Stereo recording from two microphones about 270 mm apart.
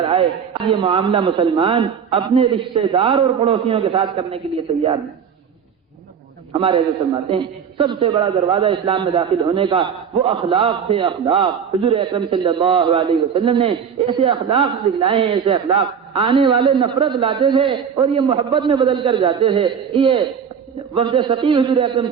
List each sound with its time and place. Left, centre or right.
0.0 s a man's voice: centre
6.5 s a man's voice: centre